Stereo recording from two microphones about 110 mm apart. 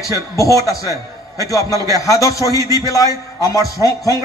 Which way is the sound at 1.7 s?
30° right (ahead or behind).